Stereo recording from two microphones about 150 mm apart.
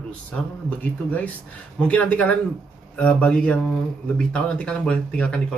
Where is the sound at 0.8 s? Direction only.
10° left (ahead or behind).